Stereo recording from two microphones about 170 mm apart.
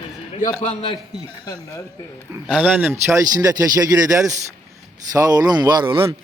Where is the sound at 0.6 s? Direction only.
35° left (ahead or behind).